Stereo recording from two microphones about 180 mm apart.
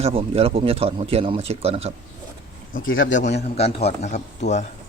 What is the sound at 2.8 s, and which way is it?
Speech, 90° left.